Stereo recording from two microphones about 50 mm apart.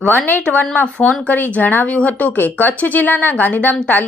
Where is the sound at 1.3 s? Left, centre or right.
Left.